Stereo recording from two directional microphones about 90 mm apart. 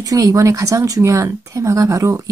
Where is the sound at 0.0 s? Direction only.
40° right (ahead or behind).